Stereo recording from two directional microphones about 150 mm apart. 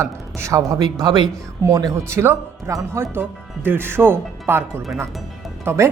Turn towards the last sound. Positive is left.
turn(degrees=-15)  # may be behind; listen again after turning